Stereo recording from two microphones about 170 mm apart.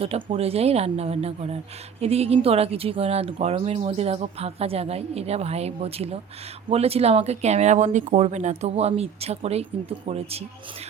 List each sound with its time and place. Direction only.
0.0 s speech: 35° right (ahead or behind)